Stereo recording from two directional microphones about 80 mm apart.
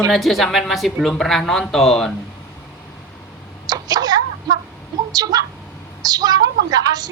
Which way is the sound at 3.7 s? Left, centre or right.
Right.